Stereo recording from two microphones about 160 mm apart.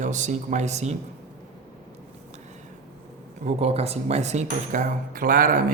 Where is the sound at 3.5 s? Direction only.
40° right (ahead or behind).